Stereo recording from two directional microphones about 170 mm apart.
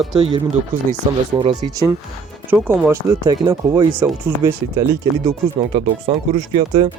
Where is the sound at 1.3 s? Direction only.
25° right (ahead or behind).